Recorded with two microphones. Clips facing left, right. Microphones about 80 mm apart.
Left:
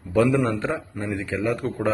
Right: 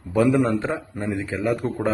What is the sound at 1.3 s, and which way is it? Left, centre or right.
Speech, centre.